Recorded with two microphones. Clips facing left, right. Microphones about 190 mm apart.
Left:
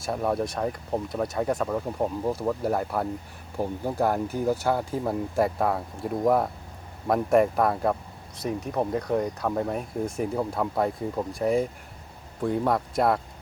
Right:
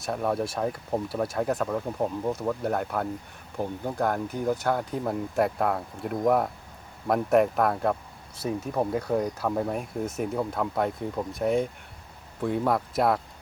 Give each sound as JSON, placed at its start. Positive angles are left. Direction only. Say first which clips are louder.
{"t": 0.0, "sound": "speech", "louder": "left 1 dB", "side_deg": 0}